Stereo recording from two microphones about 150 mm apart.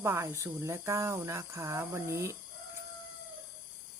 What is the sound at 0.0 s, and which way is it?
Speech, 20° right (ahead or behind).